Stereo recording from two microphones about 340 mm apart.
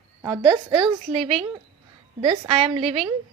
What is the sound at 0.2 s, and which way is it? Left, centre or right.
A woman's voice, centre.